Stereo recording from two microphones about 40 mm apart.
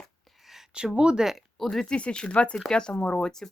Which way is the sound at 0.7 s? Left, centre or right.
Right.